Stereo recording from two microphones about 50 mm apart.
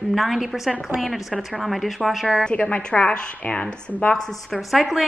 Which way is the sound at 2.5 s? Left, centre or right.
Left.